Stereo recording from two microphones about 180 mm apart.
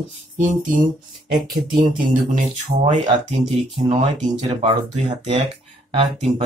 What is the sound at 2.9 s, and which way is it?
Speech, 40° right (ahead or behind).